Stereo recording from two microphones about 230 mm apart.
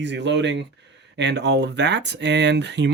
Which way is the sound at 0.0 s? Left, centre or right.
Right.